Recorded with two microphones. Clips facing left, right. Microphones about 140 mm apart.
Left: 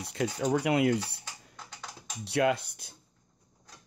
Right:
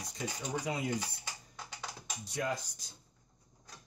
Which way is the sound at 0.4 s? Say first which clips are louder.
Left 11 dB; 70° left (ahead or behind).